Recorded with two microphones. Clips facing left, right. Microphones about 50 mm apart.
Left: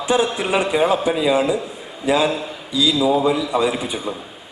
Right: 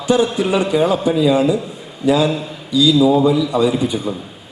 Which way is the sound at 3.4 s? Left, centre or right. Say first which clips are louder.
Right 4 dB; centre.